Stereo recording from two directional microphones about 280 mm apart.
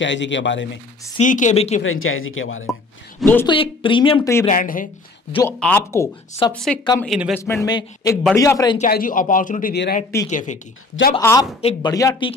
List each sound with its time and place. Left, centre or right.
0.0 s a man's voice: left
1.0 s speech: left
1.8 s speech: left
3.2 s speech: centre
3.5 s speech: centre
4.5 s speech: left
5.6 s speech: centre
6.8 s speech: centre
7.1 s speech: centre
7.4 s speech: centre
8.7 s speech: left
11.1 s speech: centre